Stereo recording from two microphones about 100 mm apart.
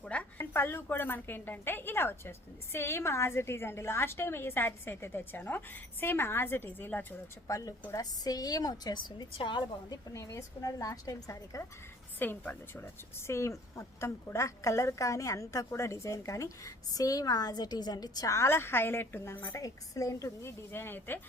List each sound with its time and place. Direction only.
0.0 s a woman's voice: 15° left (ahead or behind)
7.4 s speech: 35° left (ahead or behind); by 10.0 s 55° left (ahead or behind)
10.1 s speech: 35° left (ahead or behind)
12.2 s speech: 20° left (ahead or behind)
19.6 s a woman's voice: 35° left (ahead or behind)